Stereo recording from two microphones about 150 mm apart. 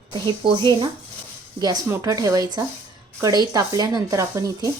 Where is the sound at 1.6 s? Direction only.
25° right (ahead or behind).